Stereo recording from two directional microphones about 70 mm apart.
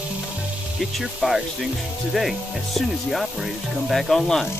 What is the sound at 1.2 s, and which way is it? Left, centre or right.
Speech, centre.